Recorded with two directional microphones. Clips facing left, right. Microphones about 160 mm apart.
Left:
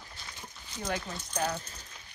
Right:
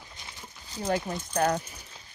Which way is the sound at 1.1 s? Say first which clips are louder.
Right 7 dB; 55° right (ahead or behind).